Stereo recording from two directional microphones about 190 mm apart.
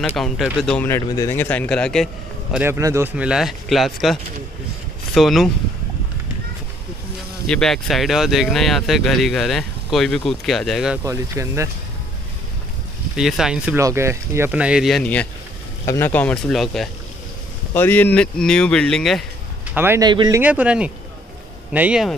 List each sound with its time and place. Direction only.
0.0 s speech: 5° left (ahead or behind)
2.5 s speech: 10° right (ahead or behind)
7.4 s speech: 5° left (ahead or behind)
11.1 s speech: 15° right (ahead or behind)
13.1 s speech: 5° right (ahead or behind)
13.7 s speech: 15° right (ahead or behind); by 15.2 s 5° left (ahead or behind)
15.8 s speech: 15° left (ahead or behind)
19.7 s speech: 10° right (ahead or behind)